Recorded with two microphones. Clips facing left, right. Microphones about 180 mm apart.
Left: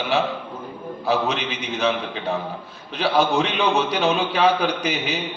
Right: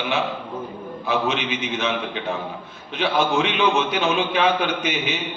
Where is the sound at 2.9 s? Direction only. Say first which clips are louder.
Left 1 dB; 35° left (ahead or behind).